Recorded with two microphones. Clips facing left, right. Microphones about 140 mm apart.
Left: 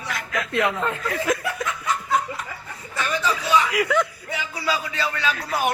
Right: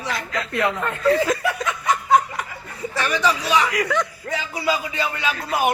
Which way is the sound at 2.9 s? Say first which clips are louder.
Right 3 dB; 75° right (ahead or behind).